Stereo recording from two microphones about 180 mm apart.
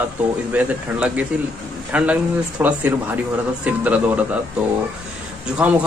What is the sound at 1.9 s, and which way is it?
A man's voice, 5° right (ahead or behind).